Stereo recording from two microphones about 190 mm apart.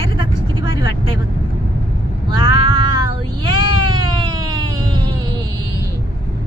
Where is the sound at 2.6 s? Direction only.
25° right (ahead or behind).